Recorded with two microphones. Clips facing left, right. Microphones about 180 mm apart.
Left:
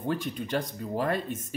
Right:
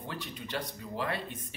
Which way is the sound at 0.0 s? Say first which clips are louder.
Left 10 dB; 50° left (ahead or behind).